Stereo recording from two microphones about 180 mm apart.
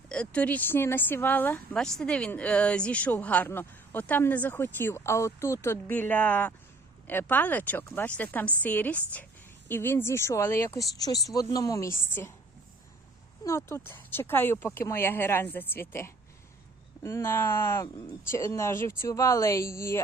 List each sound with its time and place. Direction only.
0.1 s speech: 5° left (ahead or behind)
13.4 s speech: 15° left (ahead or behind)